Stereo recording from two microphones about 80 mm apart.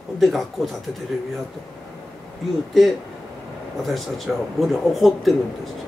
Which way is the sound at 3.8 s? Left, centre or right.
Centre.